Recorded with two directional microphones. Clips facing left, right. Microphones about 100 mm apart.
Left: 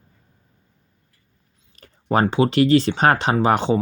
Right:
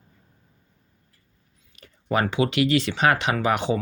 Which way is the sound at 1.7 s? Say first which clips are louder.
Left 4 dB; 40° left (ahead or behind).